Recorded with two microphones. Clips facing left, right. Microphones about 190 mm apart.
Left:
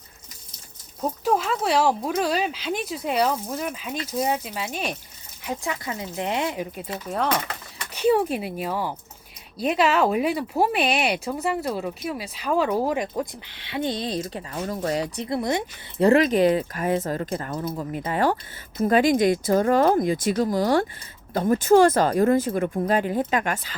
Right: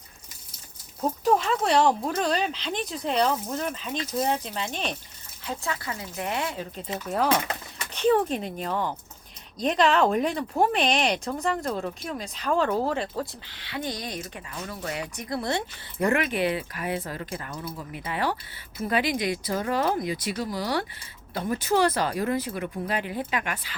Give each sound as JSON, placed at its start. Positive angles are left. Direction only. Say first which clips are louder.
{"t": 1.2, "sound": "speech", "louder": "even", "side_deg": 0}
{"t": 7.1, "sound": "speech", "louder": "right 1 dB", "side_deg": -5}
{"t": 7.9, "sound": "speech", "louder": "left 2 dB", "side_deg": 10}
{"t": 16.0, "sound": "speech", "louder": "left 7 dB", "side_deg": 35}